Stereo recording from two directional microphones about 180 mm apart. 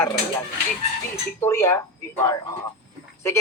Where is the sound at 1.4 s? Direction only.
15° left (ahead or behind).